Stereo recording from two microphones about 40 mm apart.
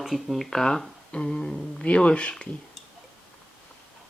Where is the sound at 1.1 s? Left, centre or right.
Left.